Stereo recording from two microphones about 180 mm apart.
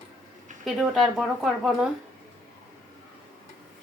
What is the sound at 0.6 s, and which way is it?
A woman's voice, centre (ahead or behind).